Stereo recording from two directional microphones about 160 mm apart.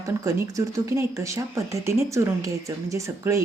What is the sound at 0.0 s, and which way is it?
Speech, 20° right (ahead or behind).